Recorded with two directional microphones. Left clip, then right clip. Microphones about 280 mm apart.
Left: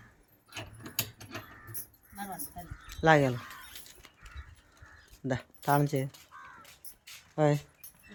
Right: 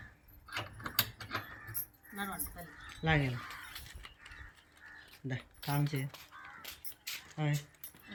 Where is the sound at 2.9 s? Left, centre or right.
Centre.